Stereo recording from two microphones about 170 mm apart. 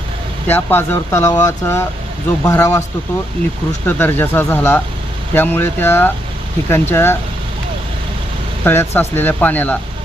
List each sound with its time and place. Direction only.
0.4 s speech: 10° left (ahead or behind)
3.8 s speech: 10° left (ahead or behind)
8.6 s speech: 15° left (ahead or behind)